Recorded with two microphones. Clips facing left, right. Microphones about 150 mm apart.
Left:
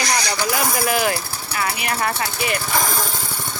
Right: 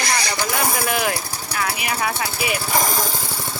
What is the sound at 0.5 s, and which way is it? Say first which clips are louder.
Speech: left 1 dB; centre (ahead or behind).